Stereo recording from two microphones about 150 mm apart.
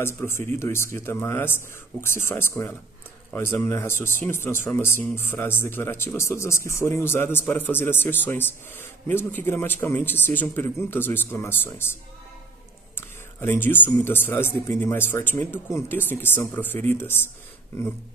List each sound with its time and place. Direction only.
0.0 s speech: 15° left (ahead or behind)